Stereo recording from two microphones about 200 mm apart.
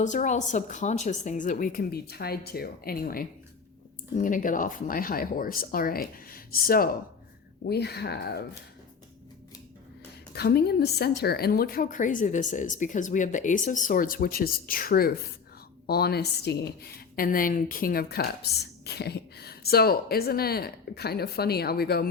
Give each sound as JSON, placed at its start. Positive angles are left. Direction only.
{"t": 0.0, "sound": "a woman's voice", "side_deg": 35}
{"t": 10.3, "sound": "a woman's voice", "side_deg": 55}